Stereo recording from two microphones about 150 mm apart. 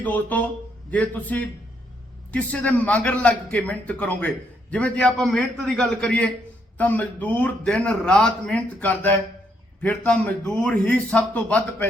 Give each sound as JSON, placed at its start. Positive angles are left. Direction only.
{"t": 0.0, "sound": "a man's voice", "side_deg": 10}